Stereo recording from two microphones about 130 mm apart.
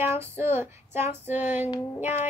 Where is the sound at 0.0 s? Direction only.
20° right (ahead or behind).